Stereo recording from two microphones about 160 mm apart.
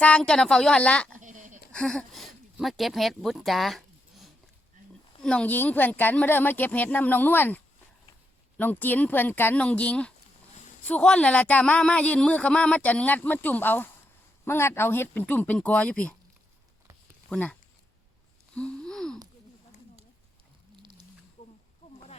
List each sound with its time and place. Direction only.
0.0 s speech: 5° left (ahead or behind)
1.2 s a sound: 50° right (ahead or behind)
1.7 s speech: 5° left (ahead or behind)
17.2 s speech: 5° left (ahead or behind)
18.5 s wheeze: 5° left (ahead or behind)